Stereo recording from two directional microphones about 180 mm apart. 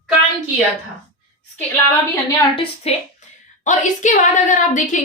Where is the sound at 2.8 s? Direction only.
35° left (ahead or behind).